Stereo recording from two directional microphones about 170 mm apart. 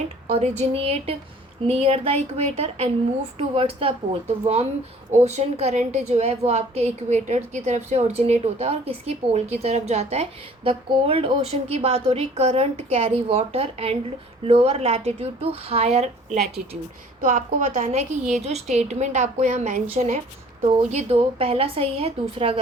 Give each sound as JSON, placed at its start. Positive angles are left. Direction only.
{"t": 0.3, "sound": "a woman's voice", "side_deg": -40}